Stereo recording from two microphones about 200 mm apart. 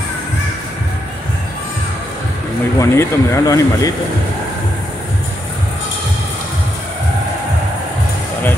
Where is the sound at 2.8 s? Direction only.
15° left (ahead or behind).